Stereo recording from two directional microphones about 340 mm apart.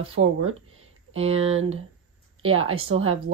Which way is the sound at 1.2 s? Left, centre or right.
Centre.